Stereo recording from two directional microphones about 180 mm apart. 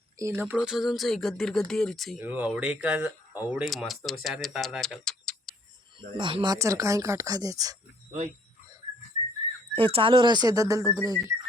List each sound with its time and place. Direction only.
0.2 s speech: 15° right (ahead or behind); by 2.1 s centre (ahead or behind)
2.1 s speech: 10° right (ahead or behind)
6.1 s speech: 25° right (ahead or behind)
9.7 s speech: 30° right (ahead or behind)